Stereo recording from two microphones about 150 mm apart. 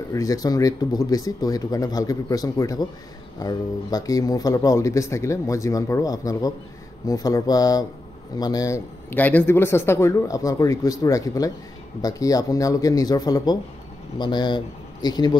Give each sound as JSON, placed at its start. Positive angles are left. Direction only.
{"t": 0.1, "sound": "speech", "side_deg": 25}